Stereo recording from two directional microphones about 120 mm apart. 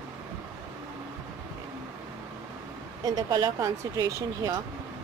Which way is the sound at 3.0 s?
30° right (ahead or behind).